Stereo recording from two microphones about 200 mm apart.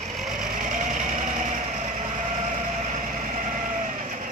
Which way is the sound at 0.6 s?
40° right (ahead or behind).